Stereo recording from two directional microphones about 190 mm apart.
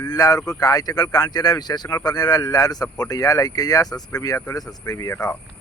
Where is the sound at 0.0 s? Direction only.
20° left (ahead or behind).